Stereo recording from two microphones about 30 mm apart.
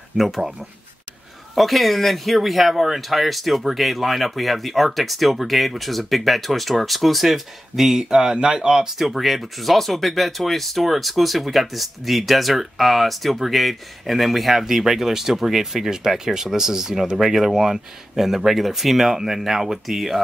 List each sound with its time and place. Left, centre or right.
0.2 s speech: centre
1.5 s speech: centre
8.0 s speech: right
8.9 s speech: centre